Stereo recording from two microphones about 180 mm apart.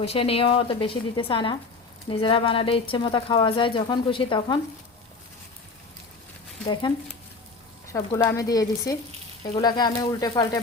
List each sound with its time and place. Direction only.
0.0 s speech: 35° left (ahead or behind)
7.9 s speech: 20° left (ahead or behind)